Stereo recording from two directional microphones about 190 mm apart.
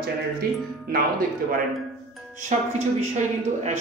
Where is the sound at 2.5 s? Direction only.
40° right (ahead or behind).